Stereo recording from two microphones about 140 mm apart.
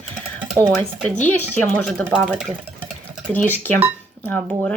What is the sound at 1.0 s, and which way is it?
Speech, 10° left (ahead or behind).